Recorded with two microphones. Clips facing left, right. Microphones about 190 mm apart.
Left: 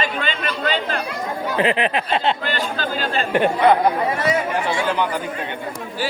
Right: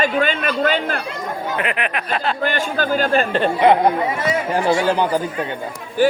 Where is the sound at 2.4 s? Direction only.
50° right (ahead or behind).